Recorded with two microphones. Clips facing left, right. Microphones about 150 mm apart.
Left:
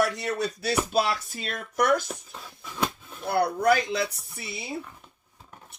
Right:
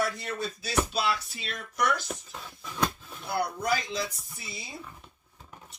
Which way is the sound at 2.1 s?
5° left (ahead or behind).